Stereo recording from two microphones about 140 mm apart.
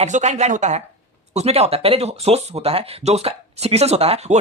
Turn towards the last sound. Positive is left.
turn(degrees=-50)  # may be behind; listen again after turning